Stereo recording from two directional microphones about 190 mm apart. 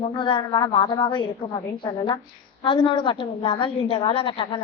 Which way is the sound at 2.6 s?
25° left (ahead or behind).